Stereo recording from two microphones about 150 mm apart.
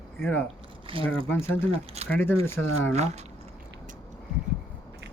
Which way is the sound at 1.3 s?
15° left (ahead or behind).